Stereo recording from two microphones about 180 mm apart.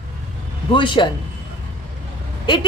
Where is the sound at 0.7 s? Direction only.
25° left (ahead or behind).